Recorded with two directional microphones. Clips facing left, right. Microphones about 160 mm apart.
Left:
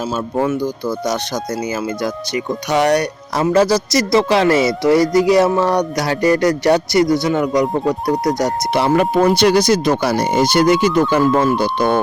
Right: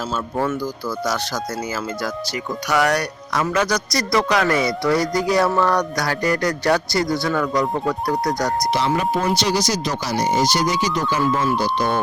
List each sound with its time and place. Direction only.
0.3 s speech: 20° left (ahead or behind)
8.7 s speech: 60° left (ahead or behind)